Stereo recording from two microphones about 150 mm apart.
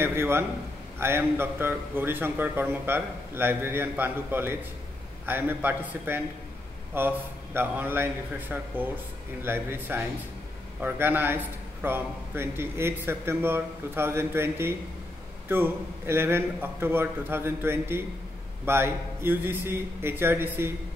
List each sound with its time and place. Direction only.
0.0 s a man's voice: 15° right (ahead or behind)